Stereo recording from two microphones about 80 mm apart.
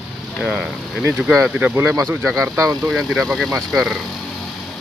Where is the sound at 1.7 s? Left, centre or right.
Right.